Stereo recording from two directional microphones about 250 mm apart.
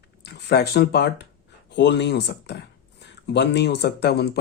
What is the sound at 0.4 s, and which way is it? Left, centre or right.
Speech, left.